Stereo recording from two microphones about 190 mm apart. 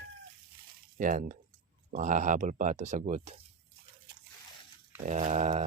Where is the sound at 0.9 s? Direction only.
45° right (ahead or behind).